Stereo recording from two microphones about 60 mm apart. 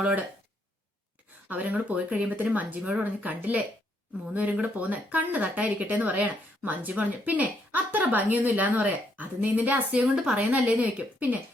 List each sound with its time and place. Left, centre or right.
0.0 s speech: right
1.5 s speech: right